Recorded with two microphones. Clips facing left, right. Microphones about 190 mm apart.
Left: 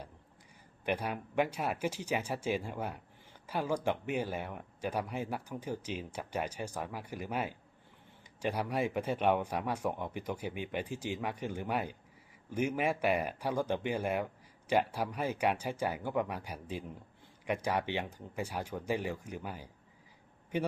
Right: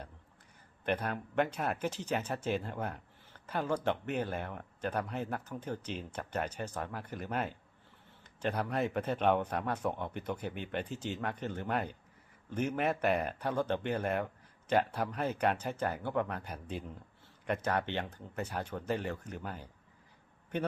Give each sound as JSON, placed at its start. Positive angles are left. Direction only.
{"t": 0.9, "sound": "speech", "side_deg": 10}